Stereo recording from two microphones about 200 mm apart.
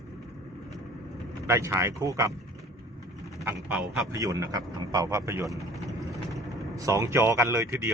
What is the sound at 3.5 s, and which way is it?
Speech, 15° right (ahead or behind).